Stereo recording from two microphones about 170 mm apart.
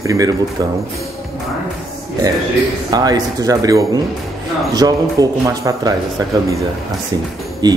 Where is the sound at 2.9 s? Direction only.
20° right (ahead or behind).